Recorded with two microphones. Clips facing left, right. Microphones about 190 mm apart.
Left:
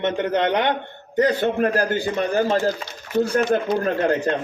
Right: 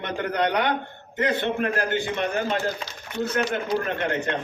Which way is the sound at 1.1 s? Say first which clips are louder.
Left 5 dB; 40° left (ahead or behind).